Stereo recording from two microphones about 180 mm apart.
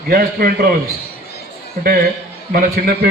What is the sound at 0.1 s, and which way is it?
Speech, 55° right (ahead or behind).